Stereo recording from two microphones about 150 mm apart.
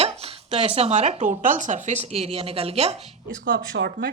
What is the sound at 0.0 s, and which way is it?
Speech, 40° right (ahead or behind).